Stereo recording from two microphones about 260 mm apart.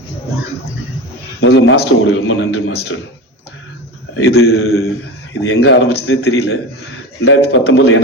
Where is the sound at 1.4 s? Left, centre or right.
Left.